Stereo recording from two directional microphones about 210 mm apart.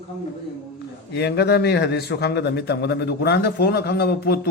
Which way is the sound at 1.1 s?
50° left (ahead or behind).